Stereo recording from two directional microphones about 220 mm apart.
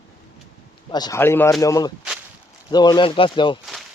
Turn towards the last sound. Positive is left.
turn(degrees=20)  # may be behind; listen again after turning